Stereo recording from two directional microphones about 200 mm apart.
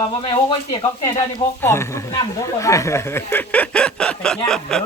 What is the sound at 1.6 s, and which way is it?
Speech, 15° left (ahead or behind).